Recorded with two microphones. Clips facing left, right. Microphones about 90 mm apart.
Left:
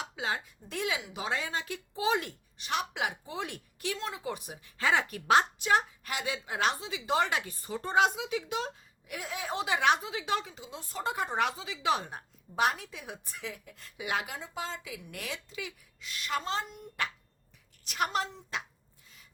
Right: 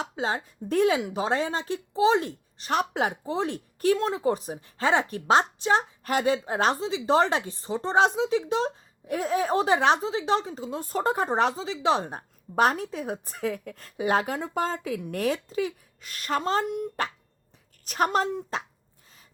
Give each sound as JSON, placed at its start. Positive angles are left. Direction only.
{"t": 0.0, "sound": "a woman's voice", "side_deg": -35}
{"t": 2.6, "sound": "a woman's voice", "side_deg": -40}
{"t": 6.1, "sound": "speech", "side_deg": -40}
{"t": 14.3, "sound": "speech", "side_deg": -50}